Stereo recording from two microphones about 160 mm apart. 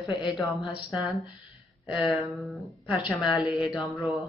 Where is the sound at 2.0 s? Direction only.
Centre (ahead or behind).